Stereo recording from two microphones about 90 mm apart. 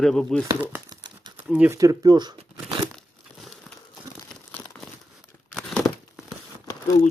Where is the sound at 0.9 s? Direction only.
55° right (ahead or behind).